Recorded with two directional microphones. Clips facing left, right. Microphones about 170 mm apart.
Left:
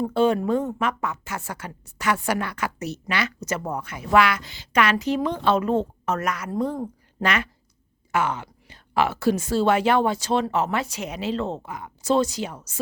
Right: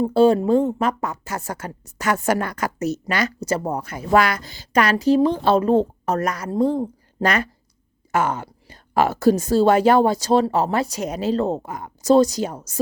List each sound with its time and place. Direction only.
0.0 s speech: 35° right (ahead or behind)